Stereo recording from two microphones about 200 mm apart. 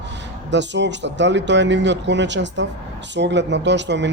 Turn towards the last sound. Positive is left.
turn(degrees=-60)  # may be behind; listen again after turning